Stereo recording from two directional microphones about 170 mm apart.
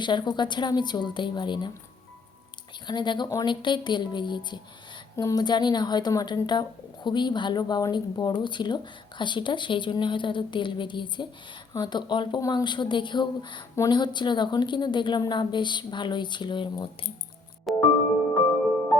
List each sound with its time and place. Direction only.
0.0 s a woman's voice: 25° left (ahead or behind)
2.8 s a woman's voice: 25° left (ahead or behind)
17.7 s music: centre (ahead or behind)